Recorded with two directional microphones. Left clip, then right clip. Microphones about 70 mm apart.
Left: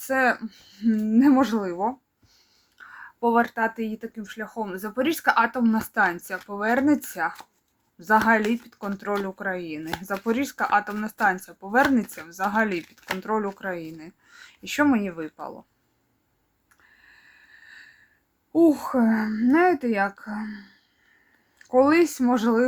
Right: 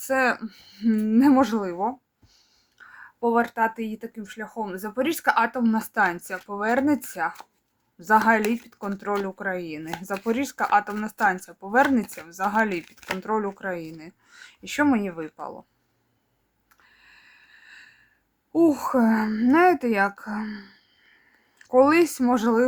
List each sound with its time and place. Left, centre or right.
0.0 s speech: centre
0.4 s speech: right; by 2.4 s centre
2.7 s speech: centre
16.8 s a sound: centre
18.5 s speech: right
21.6 s speech: centre